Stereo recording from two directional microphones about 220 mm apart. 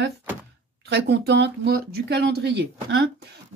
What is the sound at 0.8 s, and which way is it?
A woman's voice, 50° right (ahead or behind).